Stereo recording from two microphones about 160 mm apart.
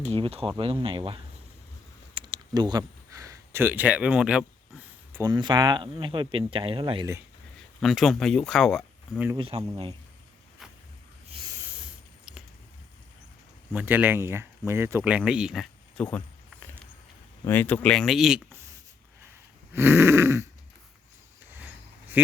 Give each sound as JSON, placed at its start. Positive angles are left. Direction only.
{"t": 0.2, "sound": "speech", "side_deg": -35}
{"t": 5.1, "sound": "speech", "side_deg": -25}
{"t": 7.8, "sound": "speech", "side_deg": 0}
{"t": 9.4, "sound": "speech", "side_deg": -35}
{"t": 10.6, "sound": "a sound", "side_deg": 0}
{"t": 11.8, "sound": "spray", "side_deg": -5}
{"t": 13.7, "sound": "speech", "side_deg": -10}
{"t": 16.0, "sound": "speech", "side_deg": 10}
{"t": 17.4, "sound": "speech", "side_deg": 10}
{"t": 19.7, "sound": "speech", "side_deg": -15}